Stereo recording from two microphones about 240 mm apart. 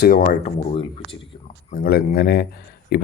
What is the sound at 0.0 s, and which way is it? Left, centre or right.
Speech, left.